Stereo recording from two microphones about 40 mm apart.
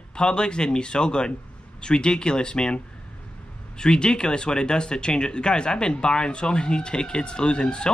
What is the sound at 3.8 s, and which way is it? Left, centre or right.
Speech, left.